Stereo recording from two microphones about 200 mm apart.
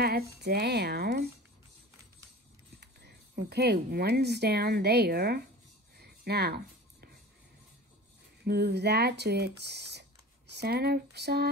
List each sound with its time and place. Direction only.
0.0 s speech: 50° right (ahead or behind)
2.8 s speech: 55° right (ahead or behind)
5.9 s a sound: 55° right (ahead or behind)
8.5 s speech: 55° right (ahead or behind)